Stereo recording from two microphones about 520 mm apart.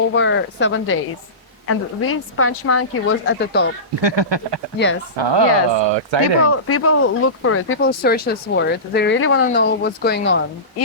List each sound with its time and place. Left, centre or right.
0.1 s speech: left
4.0 s speech: right
6.4 s speech: left